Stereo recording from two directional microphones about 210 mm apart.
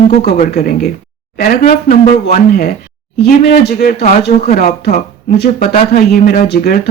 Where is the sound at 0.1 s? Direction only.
50° left (ahead or behind).